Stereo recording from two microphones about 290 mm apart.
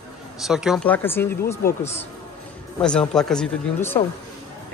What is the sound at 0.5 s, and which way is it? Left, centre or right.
Speech, centre.